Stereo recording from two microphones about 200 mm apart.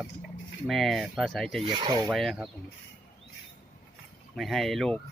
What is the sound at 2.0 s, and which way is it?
Speech, centre (ahead or behind).